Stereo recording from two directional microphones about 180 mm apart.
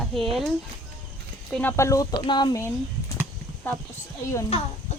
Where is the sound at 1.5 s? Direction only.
10° left (ahead or behind).